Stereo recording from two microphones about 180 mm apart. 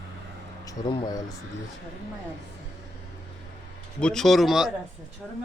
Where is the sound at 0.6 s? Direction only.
20° left (ahead or behind).